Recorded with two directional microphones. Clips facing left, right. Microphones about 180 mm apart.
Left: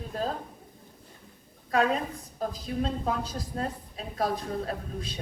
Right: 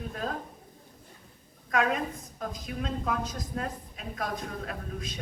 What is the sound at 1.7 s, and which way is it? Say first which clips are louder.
A woman's voice: left 2 dB; 30° left (ahead or behind).